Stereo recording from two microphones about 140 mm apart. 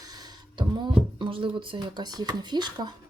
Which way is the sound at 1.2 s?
35° right (ahead or behind).